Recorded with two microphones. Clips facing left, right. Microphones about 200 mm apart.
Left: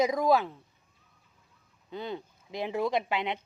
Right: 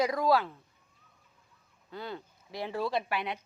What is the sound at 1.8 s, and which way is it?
Speech, 20° left (ahead or behind).